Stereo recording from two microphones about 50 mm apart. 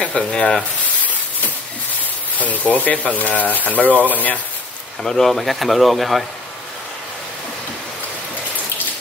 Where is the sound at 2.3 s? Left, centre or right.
Left.